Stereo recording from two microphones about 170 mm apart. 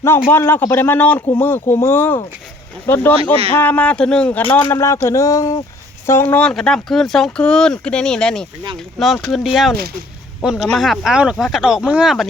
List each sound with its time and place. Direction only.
0.3 s speech: 10° left (ahead or behind); by 12.2 s 5° right (ahead or behind)